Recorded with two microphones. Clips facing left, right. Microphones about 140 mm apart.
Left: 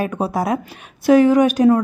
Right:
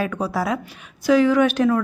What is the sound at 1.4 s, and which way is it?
Speech, 40° left (ahead or behind).